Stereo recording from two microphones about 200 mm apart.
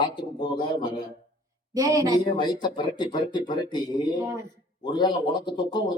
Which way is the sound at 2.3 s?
20° left (ahead or behind).